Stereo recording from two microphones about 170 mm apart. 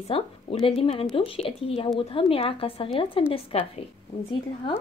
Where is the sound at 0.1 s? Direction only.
30° left (ahead or behind).